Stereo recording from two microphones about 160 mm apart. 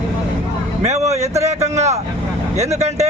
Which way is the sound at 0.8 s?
45° right (ahead or behind).